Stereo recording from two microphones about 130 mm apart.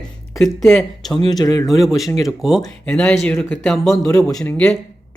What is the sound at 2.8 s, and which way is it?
Speech, 10° left (ahead or behind).